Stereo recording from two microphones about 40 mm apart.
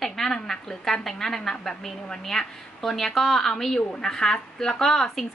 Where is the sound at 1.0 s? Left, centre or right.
Centre.